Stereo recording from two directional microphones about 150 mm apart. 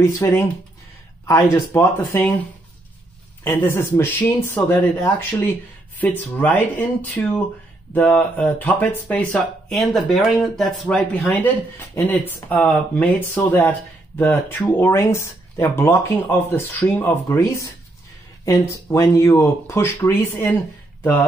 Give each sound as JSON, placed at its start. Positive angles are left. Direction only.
{"t": 0.0, "sound": "speech", "side_deg": 20}
{"t": 3.4, "sound": "speech", "side_deg": 15}